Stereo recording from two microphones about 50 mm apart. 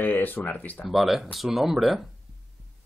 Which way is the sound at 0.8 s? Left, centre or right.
Centre.